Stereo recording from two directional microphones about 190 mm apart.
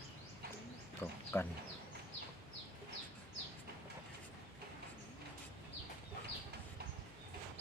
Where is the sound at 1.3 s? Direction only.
15° left (ahead or behind).